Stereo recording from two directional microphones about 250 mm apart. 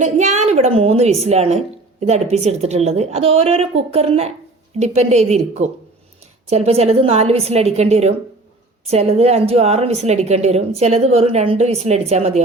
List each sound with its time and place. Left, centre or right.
0.0 s a woman's voice: right